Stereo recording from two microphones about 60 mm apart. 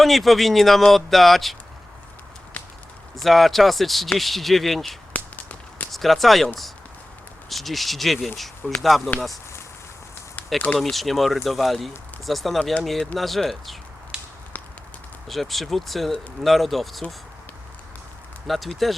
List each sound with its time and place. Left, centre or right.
0.0 s speech: centre
3.2 s speech: centre
5.1 s whip: left
5.9 s speech: centre
7.5 s speech: centre
10.8 s speech: centre
14.1 s a sound: centre
15.3 s speech: centre
18.4 s speech: centre